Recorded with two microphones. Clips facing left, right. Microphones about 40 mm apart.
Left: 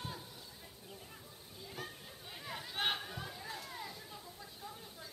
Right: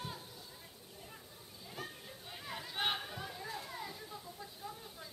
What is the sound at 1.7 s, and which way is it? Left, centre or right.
Chatter, centre.